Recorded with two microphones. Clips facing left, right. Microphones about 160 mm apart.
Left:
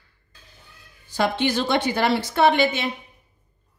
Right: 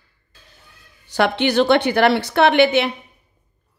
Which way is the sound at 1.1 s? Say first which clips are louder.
Right 4 dB; 70° right (ahead or behind).